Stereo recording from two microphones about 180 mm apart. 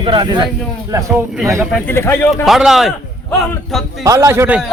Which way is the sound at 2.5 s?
Centre (ahead or behind).